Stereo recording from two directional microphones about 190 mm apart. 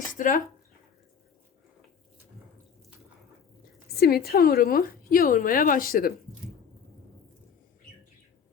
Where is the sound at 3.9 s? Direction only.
55° left (ahead or behind).